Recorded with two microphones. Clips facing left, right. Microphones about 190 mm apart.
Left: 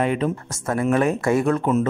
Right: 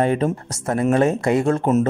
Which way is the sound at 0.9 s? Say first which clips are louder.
Right 1 dB; 25° right (ahead or behind).